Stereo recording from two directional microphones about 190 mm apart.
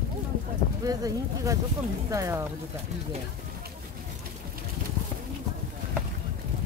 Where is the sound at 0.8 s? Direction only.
20° right (ahead or behind).